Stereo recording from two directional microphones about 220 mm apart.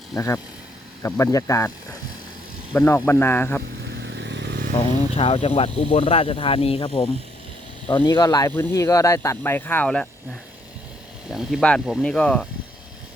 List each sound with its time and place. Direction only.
0.1 s speech: 15° left (ahead or behind)
2.7 s speech: 10° left (ahead or behind)
4.0 s vehicle: 55° right (ahead or behind)
5.1 s speech: 25° left (ahead or behind); by 10.1 s 5° left (ahead or behind)
11.3 s speech: centre (ahead or behind)